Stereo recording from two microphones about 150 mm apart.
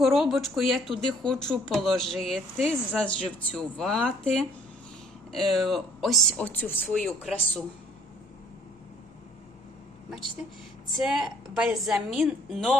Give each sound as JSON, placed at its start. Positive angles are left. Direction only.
{"t": 0.0, "sound": "speech", "side_deg": 0}
{"t": 11.0, "sound": "speech", "side_deg": -5}